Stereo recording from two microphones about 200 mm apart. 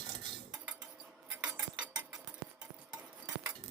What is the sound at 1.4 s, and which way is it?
Cutlery, 5° right (ahead or behind).